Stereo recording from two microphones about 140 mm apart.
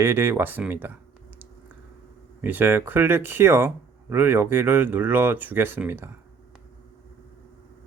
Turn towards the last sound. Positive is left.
turn(degrees=-15)  # may be behind; listen again after turning